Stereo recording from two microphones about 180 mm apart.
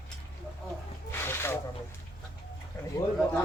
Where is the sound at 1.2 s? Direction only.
15° left (ahead or behind).